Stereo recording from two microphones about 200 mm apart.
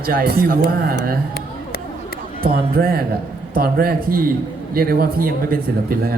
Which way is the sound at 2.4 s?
50° right (ahead or behind).